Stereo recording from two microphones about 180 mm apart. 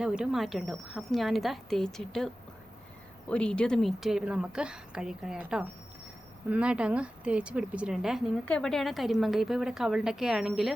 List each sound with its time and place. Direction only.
0.0 s a woman's voice: 5° right (ahead or behind)